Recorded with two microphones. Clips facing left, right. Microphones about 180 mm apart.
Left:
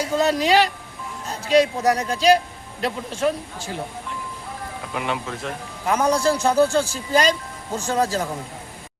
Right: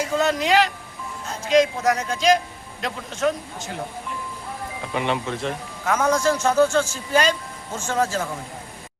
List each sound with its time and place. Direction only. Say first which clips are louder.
0.2 s speech: left 2 dB; 35° left (ahead or behind)
4.9 s speech: right 3 dB; centre (ahead or behind)
5.8 s a man's voice: left 1 dB; 15° left (ahead or behind)
6.6 s speech: even; 35° left (ahead or behind)